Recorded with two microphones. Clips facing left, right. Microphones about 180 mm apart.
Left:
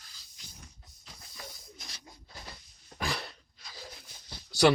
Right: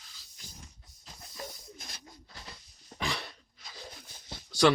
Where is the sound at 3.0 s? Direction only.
40° left (ahead or behind).